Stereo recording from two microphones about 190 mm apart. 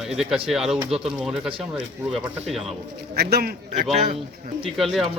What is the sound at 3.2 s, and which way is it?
Speech, 55° right (ahead or behind).